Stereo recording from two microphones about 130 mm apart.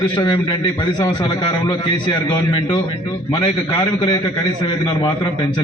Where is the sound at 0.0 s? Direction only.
30° left (ahead or behind).